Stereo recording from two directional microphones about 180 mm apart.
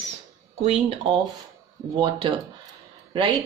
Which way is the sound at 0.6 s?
35° right (ahead or behind).